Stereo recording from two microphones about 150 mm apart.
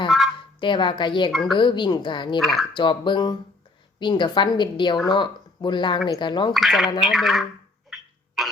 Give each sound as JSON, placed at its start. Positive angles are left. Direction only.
{"t": 0.1, "sound": "fowl", "side_deg": 0}
{"t": 0.6, "sound": "a woman's voice", "side_deg": 35}
{"t": 2.4, "sound": "speech", "side_deg": 0}
{"t": 2.7, "sound": "a woman's voice", "side_deg": 30}
{"t": 6.5, "sound": "speech", "side_deg": 0}
{"t": 7.9, "sound": "cough", "side_deg": 0}